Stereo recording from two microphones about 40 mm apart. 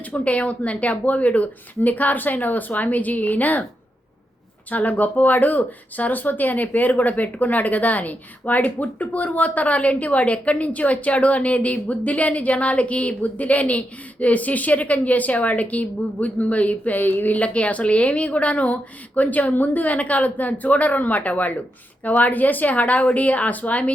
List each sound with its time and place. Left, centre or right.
0.1 s a woman's voice: left
4.7 s speech: left
17.3 s speech: left